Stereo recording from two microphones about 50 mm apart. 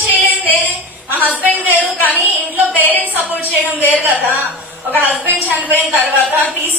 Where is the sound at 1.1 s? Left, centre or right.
Right.